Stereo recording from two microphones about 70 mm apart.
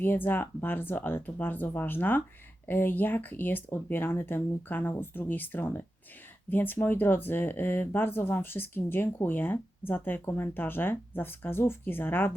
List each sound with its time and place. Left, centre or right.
0.0 s speech: left